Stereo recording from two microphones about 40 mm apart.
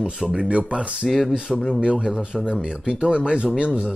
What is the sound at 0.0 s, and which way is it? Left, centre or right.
Speech, right.